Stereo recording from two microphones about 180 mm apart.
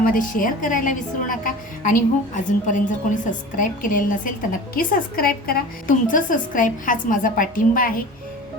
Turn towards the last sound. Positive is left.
turn(degrees=50)  # may be behind; listen again after turning